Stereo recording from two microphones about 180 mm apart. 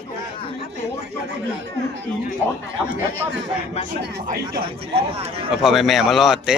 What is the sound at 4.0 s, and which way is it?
Speech, 60° right (ahead or behind).